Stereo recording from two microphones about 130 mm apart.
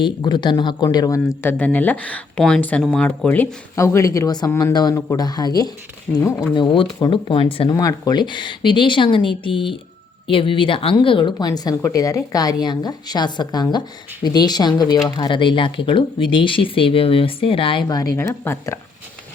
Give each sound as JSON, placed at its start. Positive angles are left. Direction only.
{"t": 0.0, "sound": "speech", "side_deg": 35}
{"t": 1.4, "sound": "speech", "side_deg": 15}
{"t": 6.1, "sound": "speech", "side_deg": 15}
{"t": 6.5, "sound": "speech", "side_deg": 40}
{"t": 7.7, "sound": "speech", "side_deg": 30}
{"t": 17.8, "sound": "speech", "side_deg": 30}